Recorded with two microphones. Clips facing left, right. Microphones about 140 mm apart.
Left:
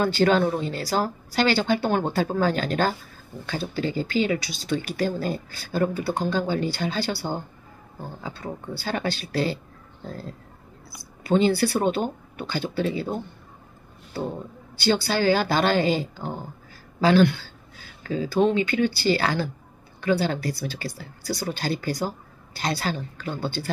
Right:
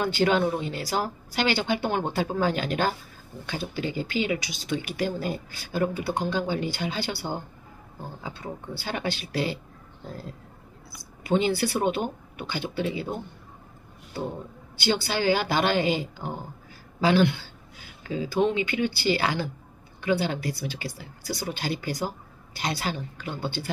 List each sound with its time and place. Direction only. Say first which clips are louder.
0.0 s speech: left 3 dB; 15° right (ahead or behind)
14.8 s speech: left 3 dB; 15° right (ahead or behind)